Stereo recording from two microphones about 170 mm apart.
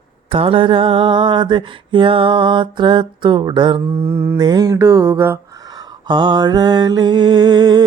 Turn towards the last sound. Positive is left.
turn(degrees=-25)  # may be behind; listen again after turning